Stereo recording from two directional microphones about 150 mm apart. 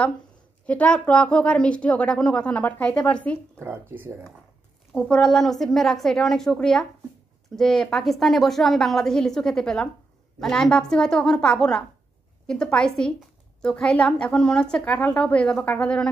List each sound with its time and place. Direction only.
0.7 s a woman's voice: 10° left (ahead or behind)
3.6 s speech: 15° right (ahead or behind)
4.9 s a woman's voice: 10° left (ahead or behind)